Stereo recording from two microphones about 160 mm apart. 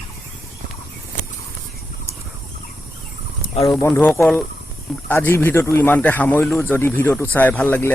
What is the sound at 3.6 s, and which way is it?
Speech, 20° left (ahead or behind).